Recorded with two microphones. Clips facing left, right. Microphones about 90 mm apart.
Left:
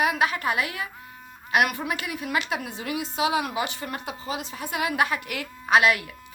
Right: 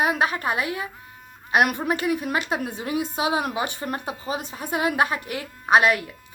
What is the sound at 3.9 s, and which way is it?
Speech, 20° right (ahead or behind).